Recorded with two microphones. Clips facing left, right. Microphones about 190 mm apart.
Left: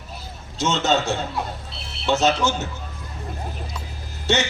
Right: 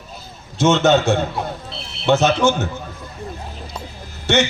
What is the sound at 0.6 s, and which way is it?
A man's voice, 55° right (ahead or behind).